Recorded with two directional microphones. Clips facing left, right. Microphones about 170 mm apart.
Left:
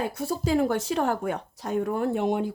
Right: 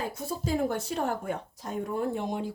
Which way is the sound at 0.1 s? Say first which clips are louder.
Left 5 dB; 70° left (ahead or behind).